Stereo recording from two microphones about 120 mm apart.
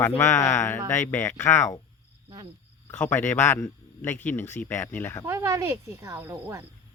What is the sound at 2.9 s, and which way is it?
Speech, 15° left (ahead or behind).